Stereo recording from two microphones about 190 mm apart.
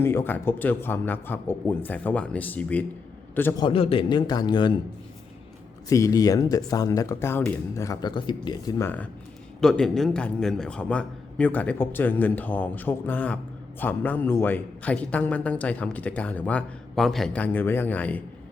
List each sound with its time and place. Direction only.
0.0 s a man's voice: 15° left (ahead or behind)
3.6 s a man's voice: 30° left (ahead or behind)
5.9 s a man's voice: 15° left (ahead or behind)